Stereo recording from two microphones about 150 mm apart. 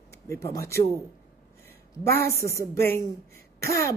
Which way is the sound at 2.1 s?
90° right.